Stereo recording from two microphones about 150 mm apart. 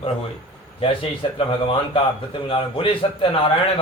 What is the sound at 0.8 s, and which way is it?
A man's voice, 35° left (ahead or behind).